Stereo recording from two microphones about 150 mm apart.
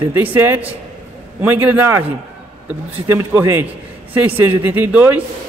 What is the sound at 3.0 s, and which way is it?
Speech, 15° right (ahead or behind).